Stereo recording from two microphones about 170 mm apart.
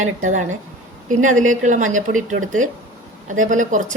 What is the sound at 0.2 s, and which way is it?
Speech, 45° right (ahead or behind).